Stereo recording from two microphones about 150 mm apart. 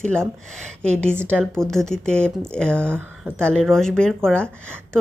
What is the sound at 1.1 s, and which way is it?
Speech, 15° right (ahead or behind).